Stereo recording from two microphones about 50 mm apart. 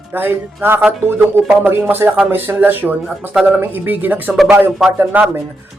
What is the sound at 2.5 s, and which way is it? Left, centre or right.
Speech, right.